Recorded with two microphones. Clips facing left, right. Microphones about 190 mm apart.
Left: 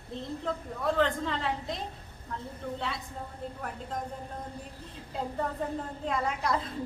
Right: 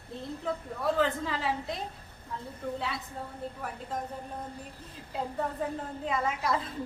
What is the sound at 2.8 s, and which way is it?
Speech, centre (ahead or behind).